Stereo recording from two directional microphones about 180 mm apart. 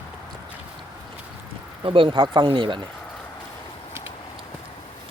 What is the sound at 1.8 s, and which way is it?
Speech, 30° right (ahead or behind).